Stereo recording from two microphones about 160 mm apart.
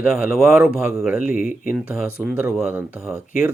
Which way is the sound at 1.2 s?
60° left (ahead or behind).